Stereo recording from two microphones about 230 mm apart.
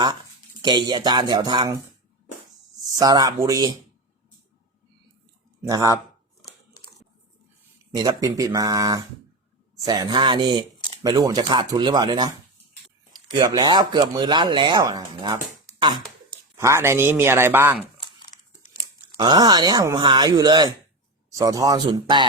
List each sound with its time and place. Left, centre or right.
0.6 s speech: centre
2.8 s speech: centre
5.6 s speech: centre
7.9 s speech: centre
13.4 s speech: centre
16.6 s speech: centre
19.2 s speech: centre